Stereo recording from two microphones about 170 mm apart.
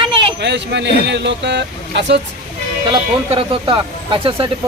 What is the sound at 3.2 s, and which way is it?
Speech, 30° right (ahead or behind).